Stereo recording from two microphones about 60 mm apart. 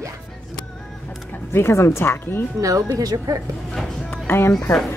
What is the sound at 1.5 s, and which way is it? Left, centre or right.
Speech, left.